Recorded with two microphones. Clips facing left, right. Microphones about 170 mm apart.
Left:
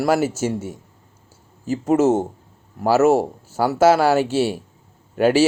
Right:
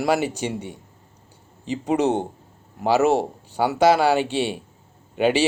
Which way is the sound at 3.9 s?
15° right (ahead or behind).